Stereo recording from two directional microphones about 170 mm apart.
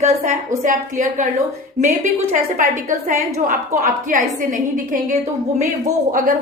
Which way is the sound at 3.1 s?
50° right (ahead or behind).